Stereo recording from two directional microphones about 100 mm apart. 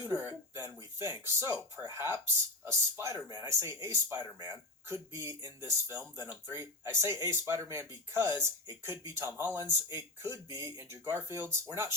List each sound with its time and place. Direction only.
0.0 s speech: 25° right (ahead or behind)
4.4 s speech: 40° right (ahead or behind)
4.9 s speech: 30° right (ahead or behind)